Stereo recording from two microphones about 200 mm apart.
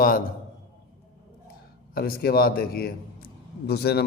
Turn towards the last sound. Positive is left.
turn(degrees=55)  # may be behind; listen again after turning